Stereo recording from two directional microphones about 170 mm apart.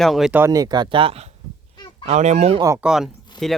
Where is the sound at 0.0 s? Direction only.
Centre (ahead or behind); by 2.6 s 40° right (ahead or behind).